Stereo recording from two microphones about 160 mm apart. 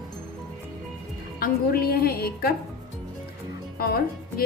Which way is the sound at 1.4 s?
70° left (ahead or behind).